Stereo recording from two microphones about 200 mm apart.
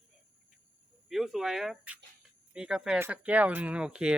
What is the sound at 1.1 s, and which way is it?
Speech, centre (ahead or behind).